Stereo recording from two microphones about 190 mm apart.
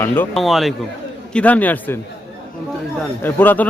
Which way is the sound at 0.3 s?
Centre (ahead or behind).